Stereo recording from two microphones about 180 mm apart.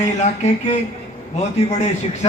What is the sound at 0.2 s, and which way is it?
A man's voice, 40° left (ahead or behind).